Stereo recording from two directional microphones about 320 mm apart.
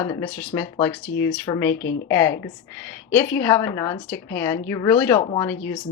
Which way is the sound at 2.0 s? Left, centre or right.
Centre.